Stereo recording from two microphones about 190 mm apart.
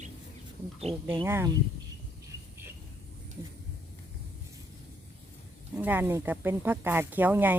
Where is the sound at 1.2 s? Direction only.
10° right (ahead or behind).